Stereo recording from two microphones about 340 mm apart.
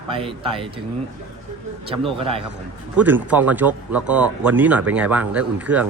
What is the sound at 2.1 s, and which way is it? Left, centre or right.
Speech, centre.